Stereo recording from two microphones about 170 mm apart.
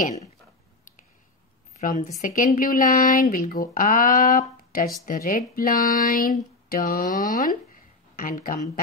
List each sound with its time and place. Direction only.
0.0 s speech: 40° left (ahead or behind)
1.8 s speech: 50° left (ahead or behind)